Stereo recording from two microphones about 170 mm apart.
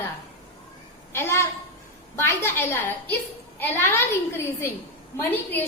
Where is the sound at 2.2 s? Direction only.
15° left (ahead or behind).